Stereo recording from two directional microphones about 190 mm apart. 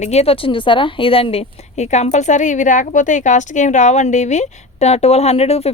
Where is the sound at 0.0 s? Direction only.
35° left (ahead or behind).